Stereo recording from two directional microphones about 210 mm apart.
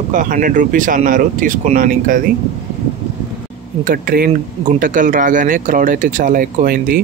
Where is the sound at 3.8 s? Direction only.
45° right (ahead or behind).